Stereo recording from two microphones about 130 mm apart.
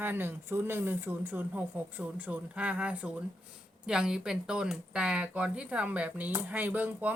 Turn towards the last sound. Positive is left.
turn(degrees=-10)  # may be behind; listen again after turning